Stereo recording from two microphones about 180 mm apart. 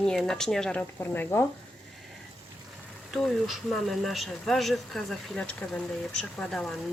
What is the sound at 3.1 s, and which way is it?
Speech, centre (ahead or behind).